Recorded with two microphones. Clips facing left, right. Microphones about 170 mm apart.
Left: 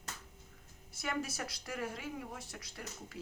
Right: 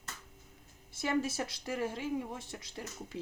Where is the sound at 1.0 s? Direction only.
25° right (ahead or behind).